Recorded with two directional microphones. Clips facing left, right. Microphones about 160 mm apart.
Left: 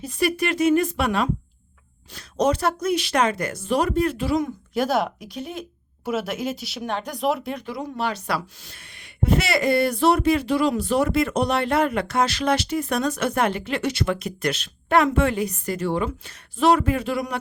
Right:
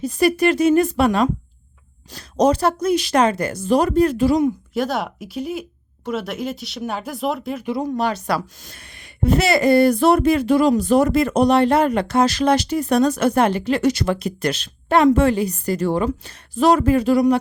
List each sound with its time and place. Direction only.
0.0 s a woman's voice: 35° right (ahead or behind)
4.7 s speech: centre (ahead or behind)
7.8 s a woman's voice: 45° right (ahead or behind)